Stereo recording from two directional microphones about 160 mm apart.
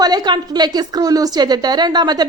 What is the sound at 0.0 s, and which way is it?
A woman's voice, 25° right (ahead or behind).